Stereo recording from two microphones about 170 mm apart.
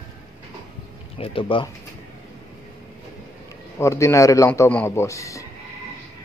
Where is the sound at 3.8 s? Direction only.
15° left (ahead or behind).